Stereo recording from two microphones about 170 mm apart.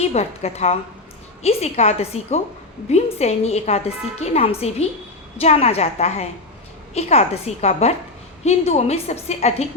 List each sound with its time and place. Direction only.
0.0 s a woman's voice: 40° left (ahead or behind)